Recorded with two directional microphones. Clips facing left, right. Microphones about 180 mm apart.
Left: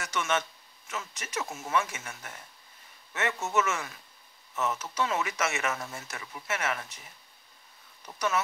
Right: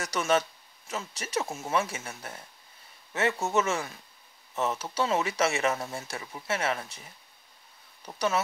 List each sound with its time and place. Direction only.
0.0 s speech: 35° right (ahead or behind)
8.0 s speech: 30° right (ahead or behind)